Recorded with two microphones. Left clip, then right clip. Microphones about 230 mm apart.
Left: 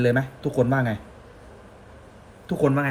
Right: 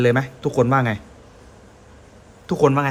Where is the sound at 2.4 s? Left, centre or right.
Centre.